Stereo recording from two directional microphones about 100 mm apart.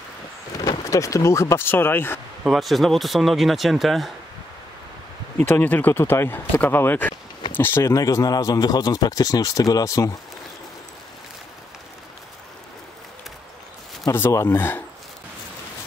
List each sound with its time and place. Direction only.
0.6 s speech: 35° left (ahead or behind)
2.4 s speech: centre (ahead or behind)
5.4 s speech: 20° left (ahead or behind)
7.9 s speech: 35° left (ahead or behind)
14.1 s speech: 25° left (ahead or behind)